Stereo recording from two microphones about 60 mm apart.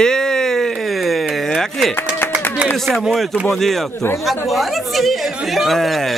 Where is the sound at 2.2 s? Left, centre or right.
Left.